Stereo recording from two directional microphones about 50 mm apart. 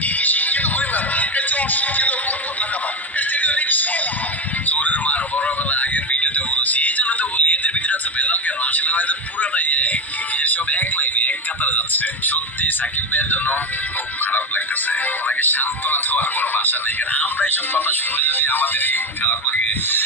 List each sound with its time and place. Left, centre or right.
0.2 s music: left
3.2 s music: left
10.4 s a sound: left
14.9 s speech: left